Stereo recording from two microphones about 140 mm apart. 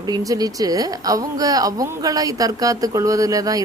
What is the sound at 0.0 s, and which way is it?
Speech, 25° right (ahead or behind).